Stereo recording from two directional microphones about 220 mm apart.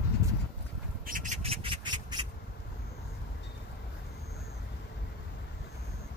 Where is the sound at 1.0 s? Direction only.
35° right (ahead or behind); by 2.2 s 20° right (ahead or behind).